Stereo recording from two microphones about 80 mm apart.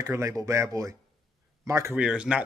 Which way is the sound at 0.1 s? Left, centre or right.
Right.